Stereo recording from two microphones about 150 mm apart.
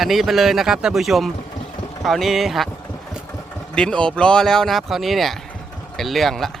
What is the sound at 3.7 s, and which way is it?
Speech, 5° left (ahead or behind).